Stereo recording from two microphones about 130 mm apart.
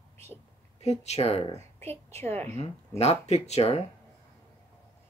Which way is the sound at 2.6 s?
55° left (ahead or behind).